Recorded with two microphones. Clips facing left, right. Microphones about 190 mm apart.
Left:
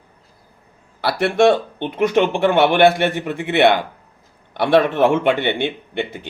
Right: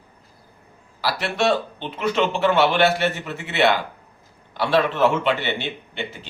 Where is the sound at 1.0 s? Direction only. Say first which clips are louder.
Left 7 dB; 55° left (ahead or behind).